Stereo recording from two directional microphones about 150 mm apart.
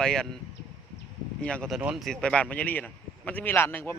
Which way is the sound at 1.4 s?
5° left (ahead or behind).